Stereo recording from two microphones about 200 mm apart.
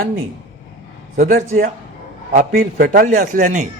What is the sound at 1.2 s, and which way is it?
A man's voice, 45° right (ahead or behind).